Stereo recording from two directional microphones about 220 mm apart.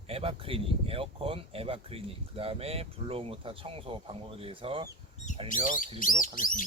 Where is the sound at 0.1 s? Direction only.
25° right (ahead or behind).